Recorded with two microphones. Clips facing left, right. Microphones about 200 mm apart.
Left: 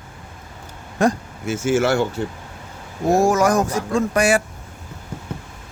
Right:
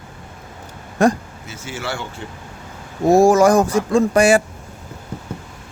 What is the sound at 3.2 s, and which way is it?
Speech, 30° right (ahead or behind).